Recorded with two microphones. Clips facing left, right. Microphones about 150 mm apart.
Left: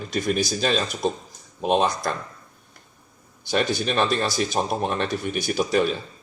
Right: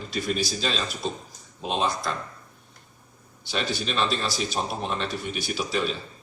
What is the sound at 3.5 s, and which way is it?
Speech, 50° left (ahead or behind).